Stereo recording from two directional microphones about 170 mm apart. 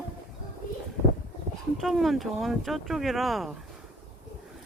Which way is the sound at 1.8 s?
Centre (ahead or behind).